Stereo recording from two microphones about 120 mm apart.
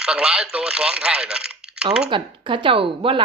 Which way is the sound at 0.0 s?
10° right (ahead or behind).